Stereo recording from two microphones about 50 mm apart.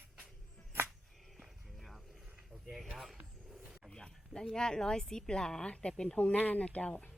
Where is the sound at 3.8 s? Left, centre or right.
Centre.